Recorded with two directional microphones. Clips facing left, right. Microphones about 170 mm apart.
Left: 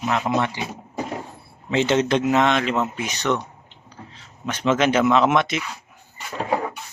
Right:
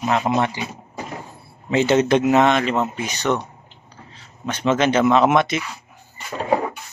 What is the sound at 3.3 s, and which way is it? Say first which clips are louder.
Speech: right 1 dB; 30° right (ahead or behind).